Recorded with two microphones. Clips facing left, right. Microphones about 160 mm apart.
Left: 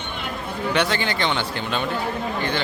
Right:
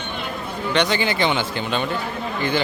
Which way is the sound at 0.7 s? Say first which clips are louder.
Right 3 dB; centre (ahead or behind).